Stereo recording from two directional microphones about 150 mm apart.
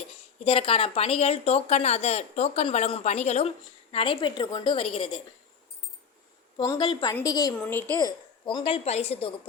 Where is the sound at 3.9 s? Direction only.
35° left (ahead or behind).